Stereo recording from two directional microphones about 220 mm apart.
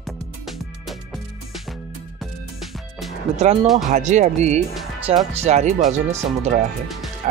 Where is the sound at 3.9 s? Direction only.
35° right (ahead or behind).